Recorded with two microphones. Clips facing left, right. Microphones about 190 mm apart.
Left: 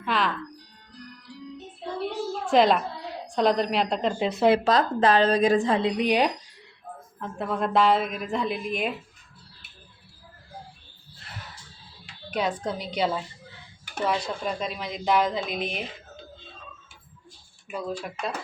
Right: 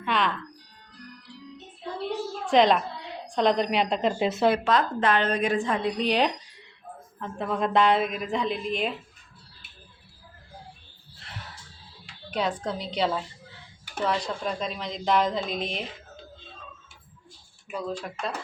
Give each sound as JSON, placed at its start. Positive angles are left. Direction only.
{"t": 0.0, "sound": "music", "side_deg": 0}
{"t": 2.5, "sound": "a woman's voice", "side_deg": 5}
{"t": 4.6, "sound": "a woman's voice", "side_deg": 35}
{"t": 6.0, "sound": "a woman's voice", "side_deg": 10}
{"t": 12.3, "sound": "a woman's voice", "side_deg": 10}
{"t": 17.7, "sound": "a woman's voice", "side_deg": 10}